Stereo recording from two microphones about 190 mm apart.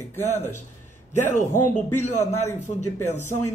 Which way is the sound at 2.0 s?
40° left (ahead or behind).